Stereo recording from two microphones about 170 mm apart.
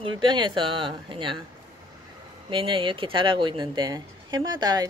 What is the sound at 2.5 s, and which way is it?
Speech, 30° right (ahead or behind).